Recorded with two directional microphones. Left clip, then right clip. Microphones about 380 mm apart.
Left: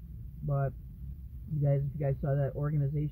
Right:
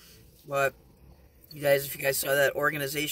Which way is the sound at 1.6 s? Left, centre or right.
Centre.